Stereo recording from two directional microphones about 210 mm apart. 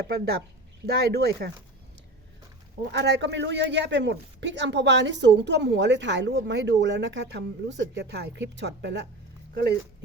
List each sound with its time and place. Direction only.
0.1 s speech: 50° right (ahead or behind)
2.8 s speech: 55° right (ahead or behind)